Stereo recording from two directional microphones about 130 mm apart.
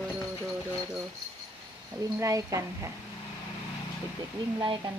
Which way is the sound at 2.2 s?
25° right (ahead or behind).